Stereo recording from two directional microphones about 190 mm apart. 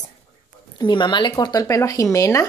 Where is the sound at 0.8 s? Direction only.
25° left (ahead or behind).